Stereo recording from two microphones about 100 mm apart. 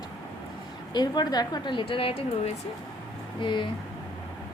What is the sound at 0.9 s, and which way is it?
A woman's voice, 45° left (ahead or behind).